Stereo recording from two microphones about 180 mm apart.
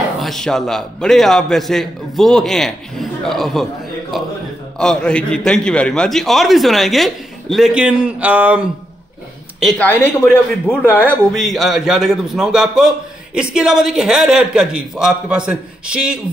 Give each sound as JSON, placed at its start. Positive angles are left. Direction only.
{"t": 0.2, "sound": "a man's voice", "side_deg": 0}
{"t": 9.8, "sound": "a man's voice", "side_deg": 10}